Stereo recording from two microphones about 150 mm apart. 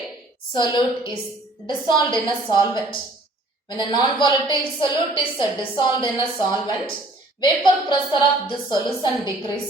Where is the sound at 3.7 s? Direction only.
30° left (ahead or behind).